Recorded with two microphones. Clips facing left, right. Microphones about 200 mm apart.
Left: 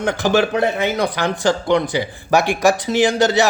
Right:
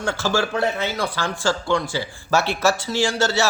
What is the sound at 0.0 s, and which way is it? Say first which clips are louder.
A man's voice: left 6 dB; 20° left (ahead or behind).